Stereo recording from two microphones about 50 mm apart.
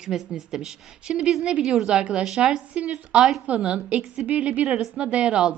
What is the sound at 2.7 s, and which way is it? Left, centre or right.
A woman's voice, right.